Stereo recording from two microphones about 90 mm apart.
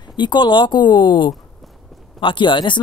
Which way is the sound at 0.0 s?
55° left (ahead or behind).